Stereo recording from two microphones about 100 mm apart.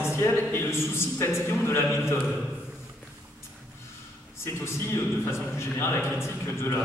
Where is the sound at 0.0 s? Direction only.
25° left (ahead or behind).